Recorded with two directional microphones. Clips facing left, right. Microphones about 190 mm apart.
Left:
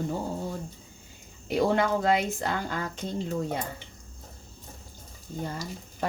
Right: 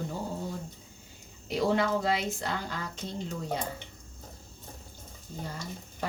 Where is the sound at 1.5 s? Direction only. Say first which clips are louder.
Left 3 dB; 55° left (ahead or behind).